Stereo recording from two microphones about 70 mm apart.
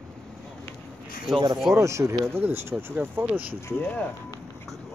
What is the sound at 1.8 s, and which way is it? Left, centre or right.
Speech, right.